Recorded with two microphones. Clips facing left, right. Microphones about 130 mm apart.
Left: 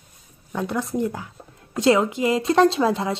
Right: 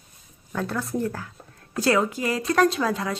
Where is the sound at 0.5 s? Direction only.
15° left (ahead or behind).